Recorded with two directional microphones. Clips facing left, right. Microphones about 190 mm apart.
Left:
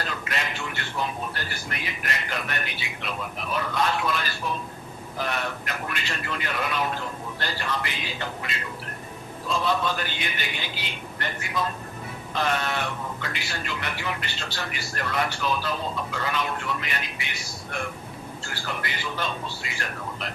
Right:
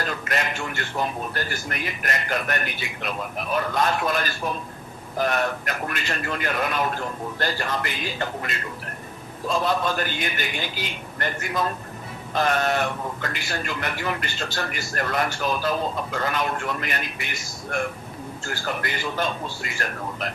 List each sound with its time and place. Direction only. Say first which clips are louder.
0.0 s a man's voice: right 4 dB; 45° right (ahead or behind)
9.6 s a man's voice: right 2 dB; 45° right (ahead or behind)